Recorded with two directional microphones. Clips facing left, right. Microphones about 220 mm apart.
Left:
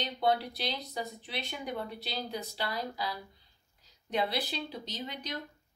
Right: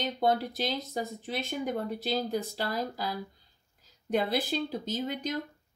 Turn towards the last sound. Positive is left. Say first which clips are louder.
# right 8 dB
turn(degrees=-50)  # may be behind; listen again after turning